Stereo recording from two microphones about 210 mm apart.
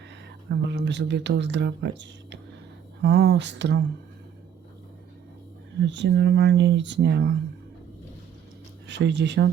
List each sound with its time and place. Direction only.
0.5 s speech: 55° right (ahead or behind)
5.8 s speech: 55° right (ahead or behind)
8.9 s speech: 55° right (ahead or behind)